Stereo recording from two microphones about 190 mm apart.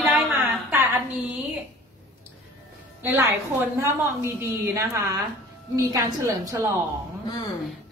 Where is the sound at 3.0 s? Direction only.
15° right (ahead or behind).